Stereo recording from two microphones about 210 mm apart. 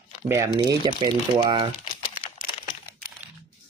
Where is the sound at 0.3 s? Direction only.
15° right (ahead or behind).